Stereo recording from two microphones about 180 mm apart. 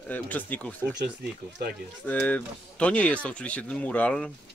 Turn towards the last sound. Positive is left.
turn(degrees=5)  # may be behind; listen again after turning